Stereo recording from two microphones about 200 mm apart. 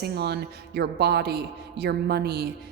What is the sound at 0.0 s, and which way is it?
A woman's voice, 55° right (ahead or behind).